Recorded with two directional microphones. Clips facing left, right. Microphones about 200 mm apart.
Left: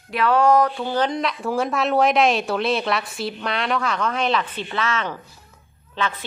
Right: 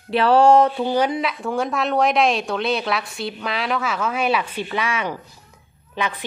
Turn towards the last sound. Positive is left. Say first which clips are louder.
# even
turn(degrees=-15)  # may be behind; listen again after turning